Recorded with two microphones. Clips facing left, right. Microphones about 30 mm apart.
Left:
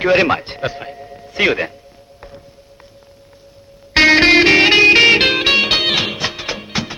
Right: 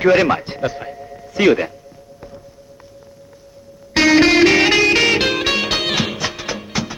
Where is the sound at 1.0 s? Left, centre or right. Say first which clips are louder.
Even; centre.